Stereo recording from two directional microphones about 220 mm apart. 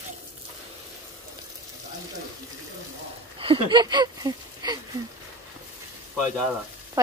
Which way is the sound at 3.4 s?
25° right (ahead or behind).